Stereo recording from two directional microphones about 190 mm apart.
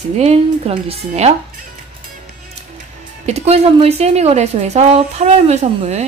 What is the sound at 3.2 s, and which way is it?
A woman's voice, 35° right (ahead or behind).